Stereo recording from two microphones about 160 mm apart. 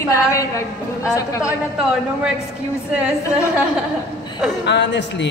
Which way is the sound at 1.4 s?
5° right (ahead or behind).